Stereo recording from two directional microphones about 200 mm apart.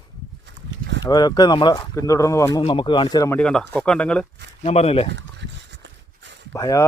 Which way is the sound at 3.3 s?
5° left (ahead or behind).